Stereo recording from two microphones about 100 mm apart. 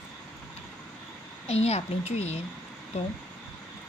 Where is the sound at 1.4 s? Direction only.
90° left.